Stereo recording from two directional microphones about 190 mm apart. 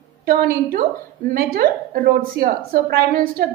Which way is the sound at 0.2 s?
50° right (ahead or behind).